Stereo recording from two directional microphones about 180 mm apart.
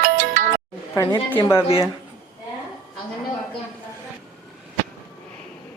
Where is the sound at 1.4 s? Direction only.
15° left (ahead or behind).